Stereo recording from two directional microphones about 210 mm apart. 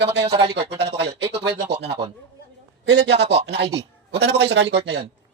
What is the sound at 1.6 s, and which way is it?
Speech, 55° right (ahead or behind).